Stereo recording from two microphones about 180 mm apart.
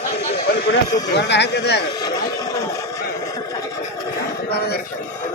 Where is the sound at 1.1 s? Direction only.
70° left (ahead or behind).